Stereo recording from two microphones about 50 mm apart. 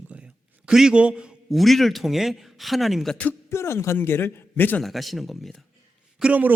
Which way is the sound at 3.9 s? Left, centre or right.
Left.